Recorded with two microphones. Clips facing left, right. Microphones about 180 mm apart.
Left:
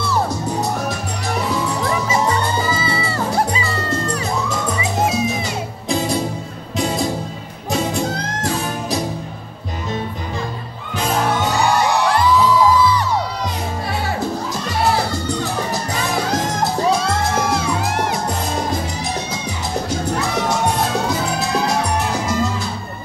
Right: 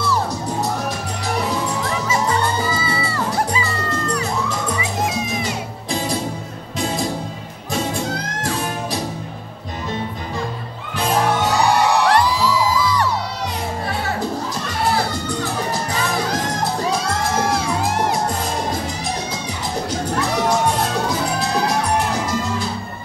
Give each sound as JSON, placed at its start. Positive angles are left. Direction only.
{"t": 12.1, "sound": "music", "side_deg": -80}